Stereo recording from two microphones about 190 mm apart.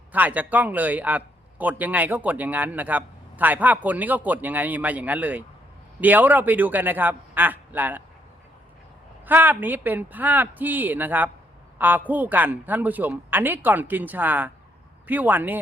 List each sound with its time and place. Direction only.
0.1 s a man's voice: 10° right (ahead or behind)
9.2 s a man's voice: 10° right (ahead or behind)